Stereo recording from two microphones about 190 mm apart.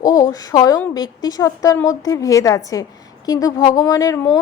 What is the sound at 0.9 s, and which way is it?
A woman's voice, 20° left (ahead or behind).